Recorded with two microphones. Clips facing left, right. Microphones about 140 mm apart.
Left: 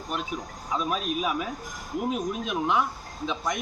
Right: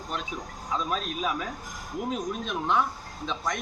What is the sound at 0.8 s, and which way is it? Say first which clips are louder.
Speech: left 3 dB; 10° left (ahead or behind).